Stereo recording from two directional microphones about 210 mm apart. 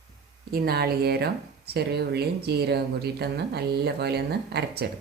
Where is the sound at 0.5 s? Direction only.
50° right (ahead or behind).